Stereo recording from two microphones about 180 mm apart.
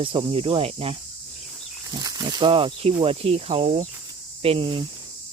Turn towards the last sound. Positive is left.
turn(degrees=-30)  # may be behind; listen again after turning